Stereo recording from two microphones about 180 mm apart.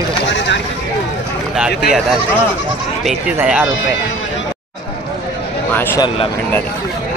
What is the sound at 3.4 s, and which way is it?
Speech, 5° right (ahead or behind).